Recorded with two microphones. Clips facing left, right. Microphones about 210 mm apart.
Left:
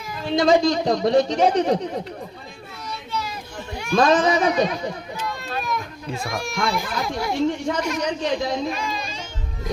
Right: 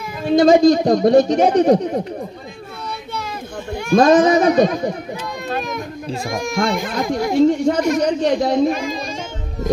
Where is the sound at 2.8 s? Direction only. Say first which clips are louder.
Right 1 dB; 55° right (ahead or behind).